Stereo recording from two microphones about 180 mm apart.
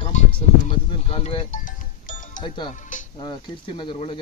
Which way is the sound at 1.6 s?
45° left (ahead or behind).